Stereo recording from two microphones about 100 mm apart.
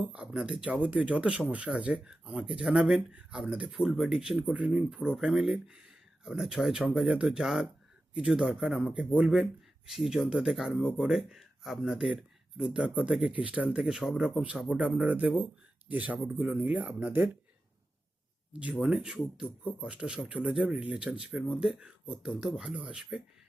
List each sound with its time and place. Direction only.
0.0 s speech: 15° right (ahead or behind)
18.8 s speech: 10° right (ahead or behind)